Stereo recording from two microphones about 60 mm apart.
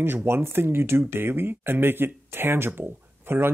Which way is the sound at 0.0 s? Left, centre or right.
Right.